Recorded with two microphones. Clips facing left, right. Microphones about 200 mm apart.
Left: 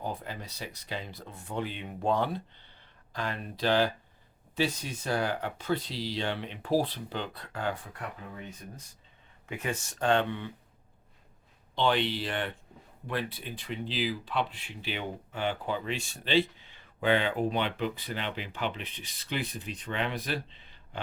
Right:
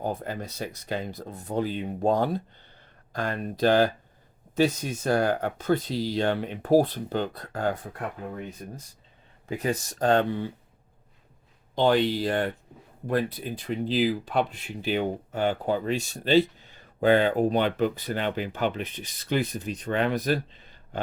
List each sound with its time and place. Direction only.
0.0 s speech: 45° right (ahead or behind)
9.5 s speech: 35° right (ahead or behind)
11.7 s speech: 40° right (ahead or behind)